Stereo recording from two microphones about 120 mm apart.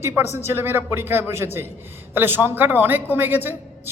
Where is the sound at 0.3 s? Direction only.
20° right (ahead or behind).